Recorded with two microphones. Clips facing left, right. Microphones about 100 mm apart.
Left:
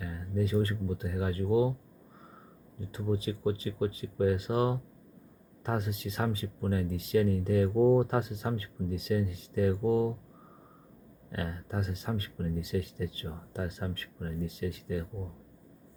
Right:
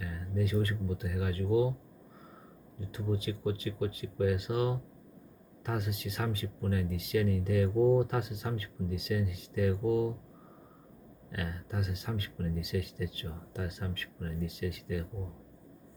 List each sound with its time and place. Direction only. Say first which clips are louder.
0.0 s speech: left 2 dB; 30° left (ahead or behind)
2.9 s speech: left 2 dB; 35° left (ahead or behind)
11.3 s speech: left 2 dB; 30° left (ahead or behind)